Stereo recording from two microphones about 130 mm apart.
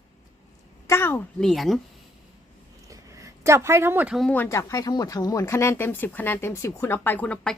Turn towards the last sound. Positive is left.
turn(degrees=10)  # may be behind; listen again after turning